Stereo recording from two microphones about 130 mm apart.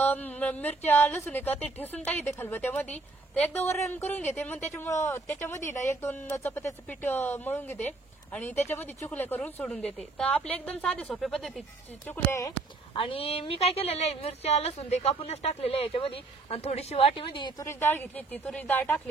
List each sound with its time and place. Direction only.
0.0 s a woman's voice: 15° left (ahead or behind)
12.1 s speech: 25° left (ahead or behind)
12.9 s speech: 45° left (ahead or behind)
17.6 s a woman's voice: 20° left (ahead or behind)